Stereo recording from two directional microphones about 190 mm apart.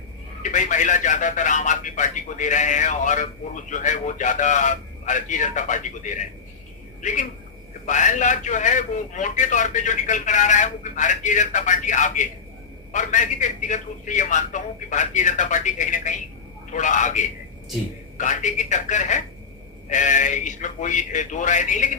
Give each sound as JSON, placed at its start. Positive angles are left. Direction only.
{"t": 0.5, "sound": "a man's voice", "side_deg": 40}